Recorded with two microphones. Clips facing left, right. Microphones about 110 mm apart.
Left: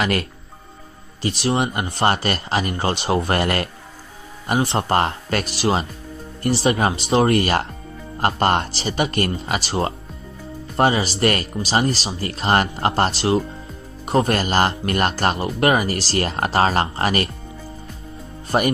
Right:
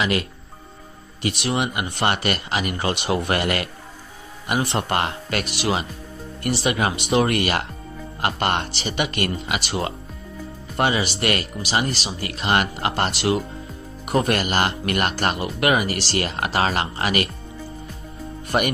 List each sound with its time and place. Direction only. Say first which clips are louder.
0.0 s speech: left 1 dB; 45° left (ahead or behind)
1.2 s speech: left 3 dB; 30° left (ahead or behind)